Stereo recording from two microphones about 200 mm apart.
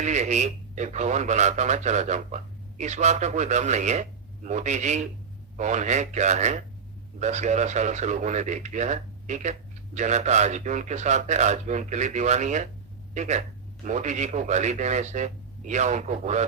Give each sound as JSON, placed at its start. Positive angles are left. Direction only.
{"t": 0.0, "sound": "speech", "side_deg": -35}